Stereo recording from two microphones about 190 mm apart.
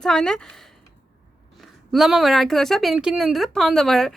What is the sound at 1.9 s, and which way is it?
A woman's voice, centre (ahead or behind).